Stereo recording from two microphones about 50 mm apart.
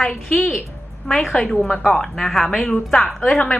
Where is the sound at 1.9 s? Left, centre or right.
Centre.